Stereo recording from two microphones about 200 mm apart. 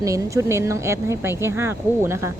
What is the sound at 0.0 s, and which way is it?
A woman's voice, 15° right (ahead or behind).